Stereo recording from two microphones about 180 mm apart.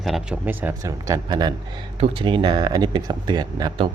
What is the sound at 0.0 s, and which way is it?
Speech, 5° right (ahead or behind).